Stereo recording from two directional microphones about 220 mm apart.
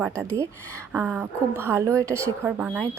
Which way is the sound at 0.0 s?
10° right (ahead or behind).